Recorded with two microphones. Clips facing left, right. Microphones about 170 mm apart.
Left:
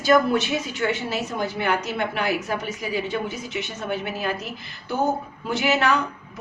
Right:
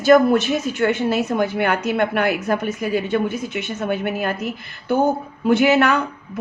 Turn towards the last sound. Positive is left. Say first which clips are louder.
# right 3 dB
turn(degrees=-55)  # may be behind; listen again after turning